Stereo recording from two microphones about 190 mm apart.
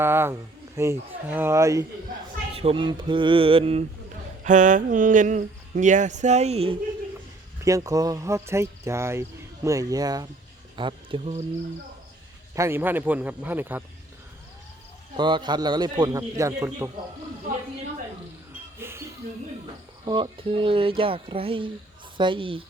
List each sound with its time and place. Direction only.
0.0 s speech: 10° right (ahead or behind)
2.6 s speech: 30° right (ahead or behind)
4.4 s speech: 40° right (ahead or behind)
7.6 s speech: 15° right (ahead or behind)
12.5 s speech: 15° right (ahead or behind)
15.1 s speech: 25° right (ahead or behind)
18.8 s music: 10° right (ahead or behind)
20.1 s speech: 25° right (ahead or behind)